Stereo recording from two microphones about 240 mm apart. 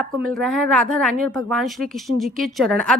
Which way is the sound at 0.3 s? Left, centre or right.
Centre.